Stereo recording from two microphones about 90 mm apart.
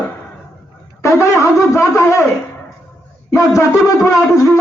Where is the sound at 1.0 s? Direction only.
35° left (ahead or behind).